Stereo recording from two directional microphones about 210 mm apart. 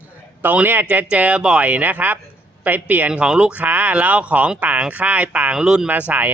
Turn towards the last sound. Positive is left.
turn(degrees=-5)  # may be behind; listen again after turning